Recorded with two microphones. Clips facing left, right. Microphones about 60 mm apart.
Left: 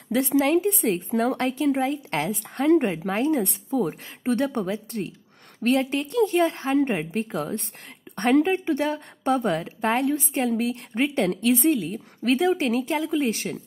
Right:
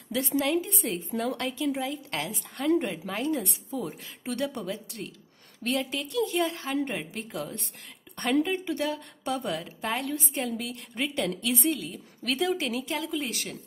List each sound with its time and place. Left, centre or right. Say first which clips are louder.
0.1 s a woman's voice: left 6 dB; left
10.5 s a woman's voice: left 9 dB; left
11.0 s a woman's voice: left 6 dB; left